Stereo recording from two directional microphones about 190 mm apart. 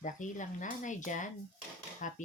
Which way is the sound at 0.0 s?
40° left (ahead or behind).